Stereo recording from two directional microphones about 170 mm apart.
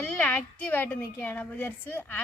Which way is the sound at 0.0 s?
5° left (ahead or behind).